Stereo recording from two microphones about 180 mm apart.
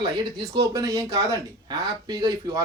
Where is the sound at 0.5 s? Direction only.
20° right (ahead or behind).